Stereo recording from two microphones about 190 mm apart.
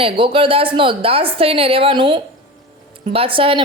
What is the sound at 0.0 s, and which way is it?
A woman's voice, 30° right (ahead or behind).